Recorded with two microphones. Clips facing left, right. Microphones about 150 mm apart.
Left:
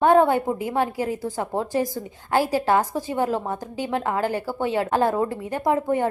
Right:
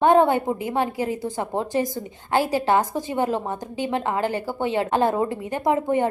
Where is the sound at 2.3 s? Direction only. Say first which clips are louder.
Even; centre (ahead or behind).